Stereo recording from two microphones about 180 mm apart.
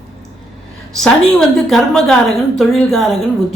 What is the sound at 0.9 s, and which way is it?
A woman's voice, centre (ahead or behind).